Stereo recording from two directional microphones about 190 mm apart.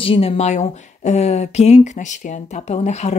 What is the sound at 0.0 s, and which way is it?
Speech, 30° left (ahead or behind).